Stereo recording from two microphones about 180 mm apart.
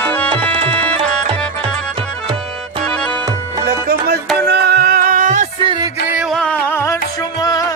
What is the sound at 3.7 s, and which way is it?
Music, 55° right (ahead or behind).